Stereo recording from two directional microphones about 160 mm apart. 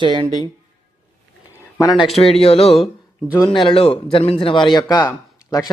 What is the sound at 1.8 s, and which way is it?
Speech, 25° left (ahead or behind).